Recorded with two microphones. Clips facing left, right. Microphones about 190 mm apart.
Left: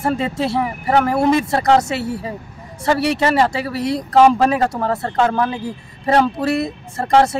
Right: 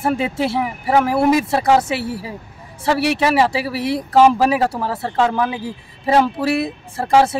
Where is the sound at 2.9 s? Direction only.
5° right (ahead or behind).